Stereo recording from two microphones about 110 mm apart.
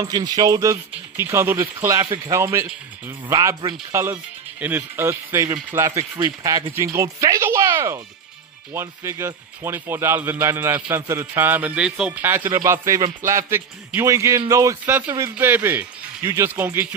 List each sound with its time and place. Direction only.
0.0 s speech: 40° right (ahead or behind)
6.7 s speech: 25° right (ahead or behind)
14.9 s speech: 15° right (ahead or behind)